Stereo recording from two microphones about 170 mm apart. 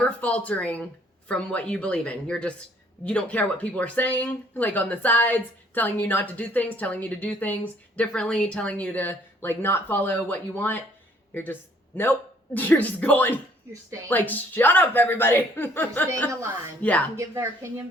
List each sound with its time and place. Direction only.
0.0 s speech: 10° left (ahead or behind)
12.5 s speech: 10° left (ahead or behind)
17.2 s a woman's voice: 15° right (ahead or behind)